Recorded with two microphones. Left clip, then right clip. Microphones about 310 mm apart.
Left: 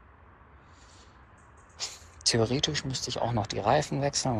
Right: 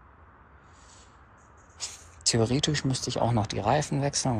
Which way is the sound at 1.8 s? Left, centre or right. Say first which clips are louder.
Left 2 dB; centre.